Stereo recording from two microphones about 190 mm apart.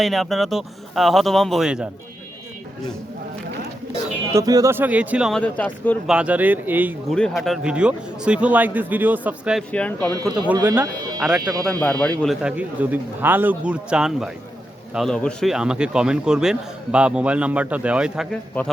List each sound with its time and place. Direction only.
0.0 s a man's voice: centre (ahead or behind)
4.4 s speech: 20° right (ahead or behind)
5.4 s speech: 10° left (ahead or behind)
6.1 s speech: 5° right (ahead or behind)
7.1 s a man's voice: centre (ahead or behind)
9.7 s speech: 5° left (ahead or behind)
10.2 s speech: 20° right (ahead or behind)
11.2 s a man's voice: 5° right (ahead or behind)
11.6 s a man's voice: 5° left (ahead or behind)